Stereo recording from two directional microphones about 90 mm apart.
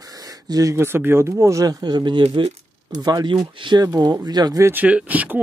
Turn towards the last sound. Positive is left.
turn(degrees=-20)  # may be behind; listen again after turning